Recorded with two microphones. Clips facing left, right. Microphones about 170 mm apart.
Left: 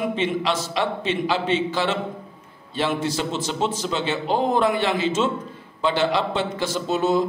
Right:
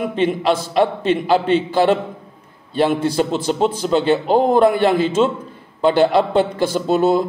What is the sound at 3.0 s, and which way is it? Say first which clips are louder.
A man's voice: right 7 dB; 55° right (ahead or behind).